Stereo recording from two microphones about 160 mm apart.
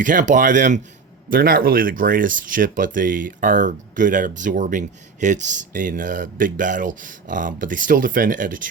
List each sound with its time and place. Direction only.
0.0 s speech: 55° right (ahead or behind)
1.3 s speech: 65° right (ahead or behind)